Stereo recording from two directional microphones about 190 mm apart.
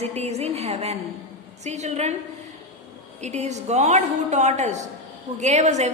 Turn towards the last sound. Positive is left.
turn(degrees=-40)  # may be behind; listen again after turning